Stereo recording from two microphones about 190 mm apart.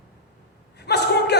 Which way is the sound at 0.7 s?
60° left (ahead or behind).